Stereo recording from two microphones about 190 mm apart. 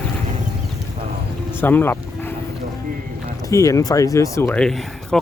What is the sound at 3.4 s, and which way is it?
Speech, 15° left (ahead or behind).